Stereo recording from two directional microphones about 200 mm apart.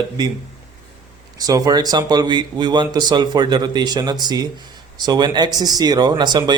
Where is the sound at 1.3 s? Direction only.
20° right (ahead or behind).